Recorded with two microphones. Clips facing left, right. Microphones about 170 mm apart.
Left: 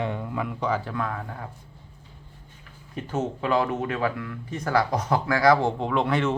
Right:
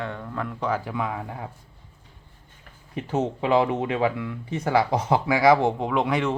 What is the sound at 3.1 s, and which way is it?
Speech, 30° right (ahead or behind).